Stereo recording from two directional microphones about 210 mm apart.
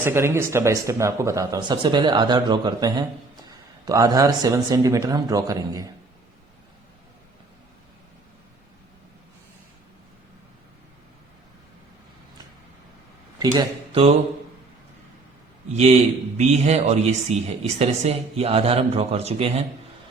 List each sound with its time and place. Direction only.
0.0 s speech: 10° right (ahead or behind)
13.4 s speech: 20° right (ahead or behind)
15.7 s a man's voice: 35° right (ahead or behind)